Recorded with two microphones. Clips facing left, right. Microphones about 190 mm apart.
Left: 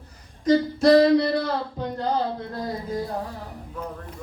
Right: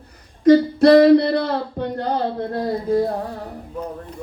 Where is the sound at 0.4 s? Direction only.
60° right (ahead or behind).